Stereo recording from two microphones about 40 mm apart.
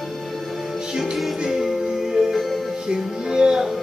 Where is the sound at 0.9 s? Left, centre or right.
Centre.